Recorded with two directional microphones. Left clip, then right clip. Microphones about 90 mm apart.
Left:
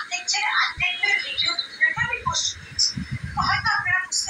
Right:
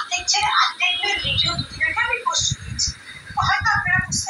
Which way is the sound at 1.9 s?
35° right (ahead or behind).